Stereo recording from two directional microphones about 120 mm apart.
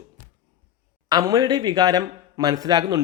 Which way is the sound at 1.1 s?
30° right (ahead or behind).